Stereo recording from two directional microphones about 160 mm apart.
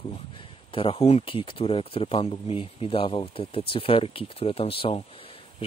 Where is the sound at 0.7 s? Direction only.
35° left (ahead or behind).